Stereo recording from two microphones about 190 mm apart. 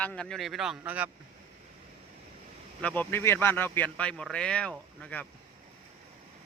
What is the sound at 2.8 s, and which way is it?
Speech, 10° left (ahead or behind).